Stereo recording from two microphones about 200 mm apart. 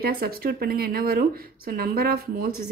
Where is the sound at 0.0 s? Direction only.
50° right (ahead or behind).